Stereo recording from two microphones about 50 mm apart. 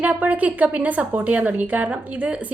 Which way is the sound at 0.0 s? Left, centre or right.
Right.